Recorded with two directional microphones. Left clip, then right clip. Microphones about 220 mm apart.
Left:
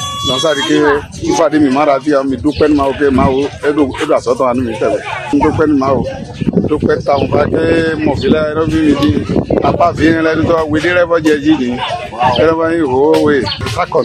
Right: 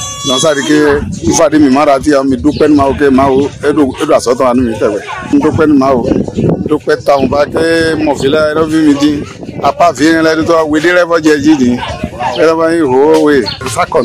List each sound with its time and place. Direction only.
0.3 s speech: 50° right (ahead or behind)